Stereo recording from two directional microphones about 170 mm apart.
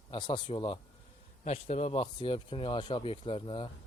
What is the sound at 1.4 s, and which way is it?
Speech, 40° left (ahead or behind).